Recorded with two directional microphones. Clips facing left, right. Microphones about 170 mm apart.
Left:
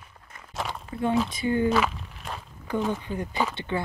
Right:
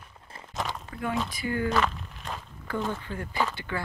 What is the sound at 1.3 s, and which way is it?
Speech, 20° left (ahead or behind).